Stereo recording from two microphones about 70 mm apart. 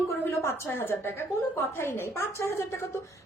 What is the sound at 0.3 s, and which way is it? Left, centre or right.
A woman's voice, left.